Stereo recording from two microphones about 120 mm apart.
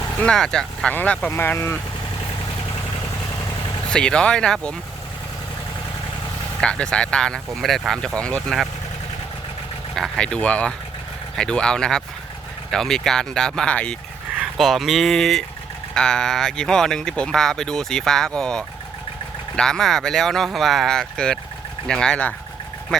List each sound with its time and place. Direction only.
0.2 s speech: 5° left (ahead or behind)
3.8 s speech: 5° left (ahead or behind)
6.6 s speech: 10° left (ahead or behind)
9.9 s speech: 5° left (ahead or behind)
14.3 s speech: centre (ahead or behind)